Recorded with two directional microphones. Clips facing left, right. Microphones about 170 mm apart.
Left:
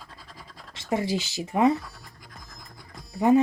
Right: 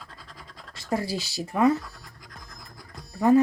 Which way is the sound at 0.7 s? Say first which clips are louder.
Left 2 dB; 25° left (ahead or behind).